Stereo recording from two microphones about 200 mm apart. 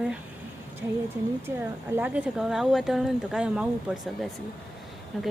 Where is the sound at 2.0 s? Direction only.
5° right (ahead or behind).